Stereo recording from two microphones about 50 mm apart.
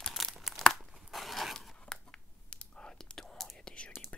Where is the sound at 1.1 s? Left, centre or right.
Centre.